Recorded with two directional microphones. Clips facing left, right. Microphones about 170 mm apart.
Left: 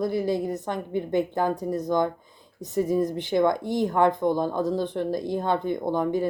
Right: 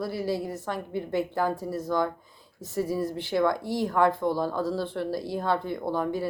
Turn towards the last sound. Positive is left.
turn(degrees=20)  # may be behind; listen again after turning